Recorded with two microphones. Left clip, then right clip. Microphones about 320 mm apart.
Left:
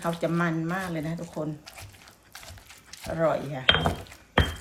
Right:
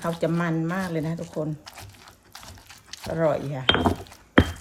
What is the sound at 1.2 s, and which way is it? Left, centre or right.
Speech, centre.